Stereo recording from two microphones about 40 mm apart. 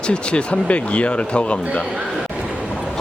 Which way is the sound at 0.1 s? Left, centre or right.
Left.